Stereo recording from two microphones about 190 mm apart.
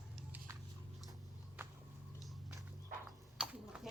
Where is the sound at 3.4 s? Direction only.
5° right (ahead or behind).